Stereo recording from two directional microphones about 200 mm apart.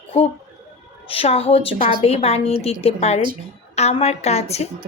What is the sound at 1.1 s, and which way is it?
A woman's voice, 30° left (ahead or behind).